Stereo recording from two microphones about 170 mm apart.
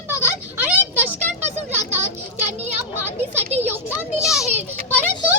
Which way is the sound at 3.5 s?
10° right (ahead or behind).